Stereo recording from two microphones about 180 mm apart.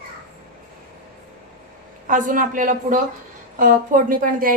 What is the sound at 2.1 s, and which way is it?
A woman's voice, 45° right (ahead or behind).